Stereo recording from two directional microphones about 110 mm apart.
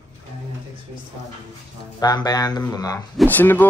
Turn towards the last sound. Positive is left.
turn(degrees=15)  # may be behind; listen again after turning